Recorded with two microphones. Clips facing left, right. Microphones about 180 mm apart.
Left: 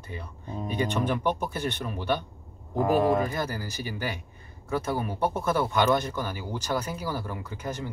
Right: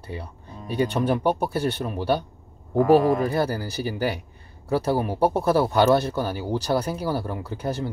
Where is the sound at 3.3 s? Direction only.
35° right (ahead or behind).